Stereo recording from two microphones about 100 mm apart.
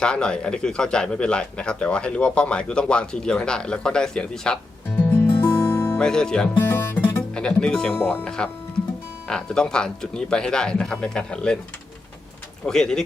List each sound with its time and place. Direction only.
0.0 s a man's voice: 10° left (ahead or behind)
5.0 s music: 20° left (ahead or behind)
5.5 s music: 30° left (ahead or behind)
6.0 s a man's voice: 5° left (ahead or behind)
6.6 s speech: 25° left (ahead or behind)
7.3 s a man's voice: 10° left (ahead or behind)
7.9 s a man's voice: 20° left (ahead or behind)
12.6 s a man's voice: 5° left (ahead or behind)